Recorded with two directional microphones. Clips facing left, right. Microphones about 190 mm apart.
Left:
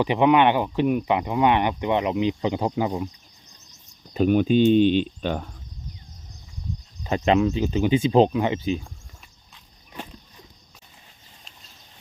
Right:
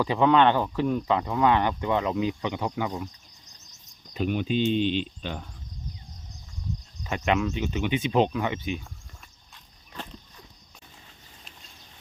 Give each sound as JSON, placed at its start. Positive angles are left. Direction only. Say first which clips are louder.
{"t": 0.0, "sound": "speech", "louder": "left 2 dB", "side_deg": 20}
{"t": 2.4, "sound": "speech", "louder": "left 5 dB", "side_deg": 30}
{"t": 4.1, "sound": "speech", "louder": "left 8 dB", "side_deg": 45}
{"t": 7.0, "sound": "speech", "louder": "left 6 dB", "side_deg": 30}